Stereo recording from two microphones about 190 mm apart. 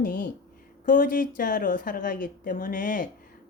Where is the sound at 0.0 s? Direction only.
45° left (ahead or behind).